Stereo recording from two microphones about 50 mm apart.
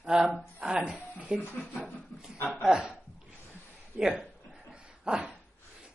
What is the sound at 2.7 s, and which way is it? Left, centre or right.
Speech, centre.